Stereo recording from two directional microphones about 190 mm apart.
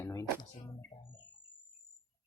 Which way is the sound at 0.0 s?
15° left (ahead or behind).